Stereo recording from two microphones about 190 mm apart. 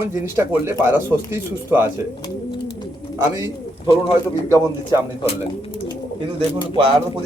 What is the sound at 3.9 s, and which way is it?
Speech, 30° left (ahead or behind).